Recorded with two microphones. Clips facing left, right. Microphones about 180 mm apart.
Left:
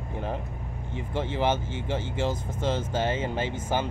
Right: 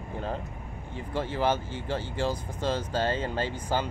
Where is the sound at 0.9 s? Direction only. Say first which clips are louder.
Left 1 dB; 20° left (ahead or behind).